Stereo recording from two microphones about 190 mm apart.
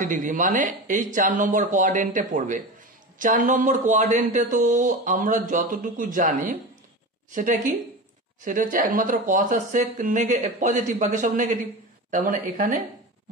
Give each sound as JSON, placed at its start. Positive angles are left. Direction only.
{"t": 0.0, "sound": "speech", "side_deg": -40}